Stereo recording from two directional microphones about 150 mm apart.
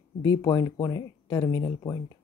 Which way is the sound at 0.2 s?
25° left (ahead or behind).